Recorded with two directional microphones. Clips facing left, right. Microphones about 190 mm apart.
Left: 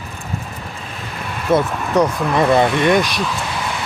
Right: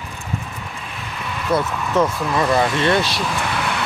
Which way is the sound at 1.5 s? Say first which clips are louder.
Left 4 dB; 15° left (ahead or behind).